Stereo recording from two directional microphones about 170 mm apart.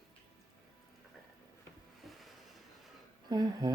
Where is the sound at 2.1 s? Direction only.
Centre (ahead or behind).